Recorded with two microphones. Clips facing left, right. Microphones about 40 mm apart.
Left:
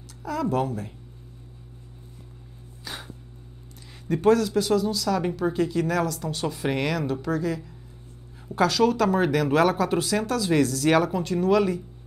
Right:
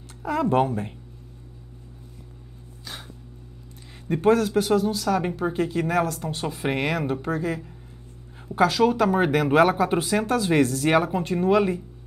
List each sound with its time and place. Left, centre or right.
0.2 s speech: right
2.8 s a sound: centre
4.1 s speech: right
4.4 s speech: right
8.5 s speech: centre